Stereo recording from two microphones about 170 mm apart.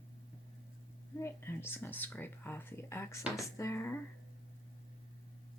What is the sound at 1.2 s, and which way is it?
Speech, 15° left (ahead or behind).